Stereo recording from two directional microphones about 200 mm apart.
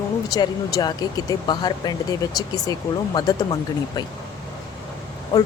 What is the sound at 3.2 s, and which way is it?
Speech, 20° left (ahead or behind).